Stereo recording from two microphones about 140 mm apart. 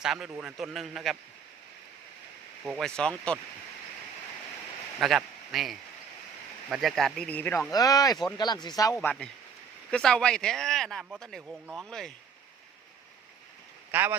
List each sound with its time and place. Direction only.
0.0 s speech: 5° right (ahead or behind)
2.7 s speech: 5° left (ahead or behind)
4.9 s speech: centre (ahead or behind)
7.7 s speech: 25° left (ahead or behind)
9.9 s speech: 5° left (ahead or behind)
13.9 s speech: 15° right (ahead or behind)